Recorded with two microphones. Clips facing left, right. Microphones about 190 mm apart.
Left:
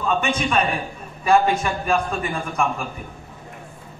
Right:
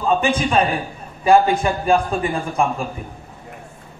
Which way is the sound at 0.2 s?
30° right (ahead or behind).